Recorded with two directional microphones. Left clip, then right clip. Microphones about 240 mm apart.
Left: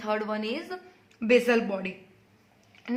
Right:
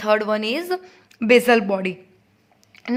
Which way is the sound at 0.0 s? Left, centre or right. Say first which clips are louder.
Right 10 dB; right.